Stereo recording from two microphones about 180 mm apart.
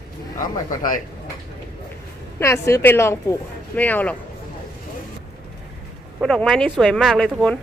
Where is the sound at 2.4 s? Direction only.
15° left (ahead or behind).